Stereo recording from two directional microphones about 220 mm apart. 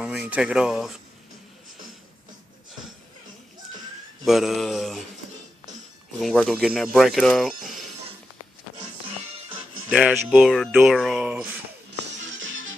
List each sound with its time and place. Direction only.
0.0 s speech: 5° right (ahead or behind)
4.2 s speech: centre (ahead or behind)
6.1 s speech: centre (ahead or behind)
9.8 s speech: 5° right (ahead or behind)
11.9 s music: 60° right (ahead or behind)